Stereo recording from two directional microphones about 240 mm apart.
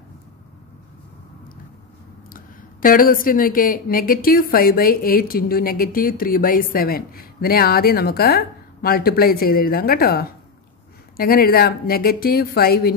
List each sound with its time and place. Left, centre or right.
2.2 s speech: left